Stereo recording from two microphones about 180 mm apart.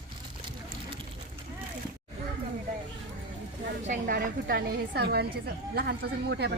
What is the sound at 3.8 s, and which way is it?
A woman's voice, 50° right (ahead or behind).